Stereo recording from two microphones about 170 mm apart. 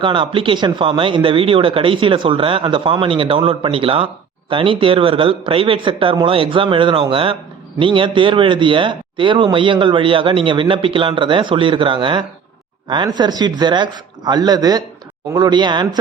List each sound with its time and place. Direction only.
0.0 s a man's voice: 30° right (ahead or behind)